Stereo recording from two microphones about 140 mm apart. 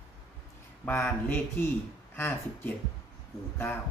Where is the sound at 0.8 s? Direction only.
15° left (ahead or behind).